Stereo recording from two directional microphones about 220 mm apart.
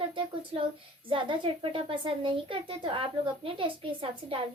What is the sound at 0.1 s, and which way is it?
Speech, 25° right (ahead or behind).